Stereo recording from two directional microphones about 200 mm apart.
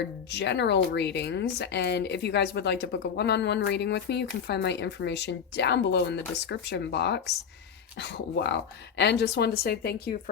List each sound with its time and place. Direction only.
0.3 s speech: 60° left (ahead or behind)